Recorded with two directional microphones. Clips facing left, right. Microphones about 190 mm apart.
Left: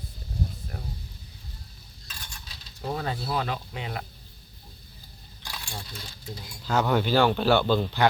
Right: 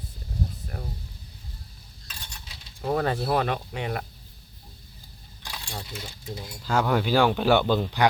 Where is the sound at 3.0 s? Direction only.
60° right (ahead or behind).